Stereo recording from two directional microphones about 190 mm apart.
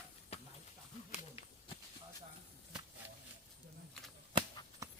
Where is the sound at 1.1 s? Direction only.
35° left (ahead or behind).